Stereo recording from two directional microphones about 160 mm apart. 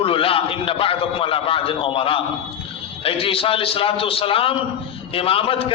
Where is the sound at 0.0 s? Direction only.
35° left (ahead or behind).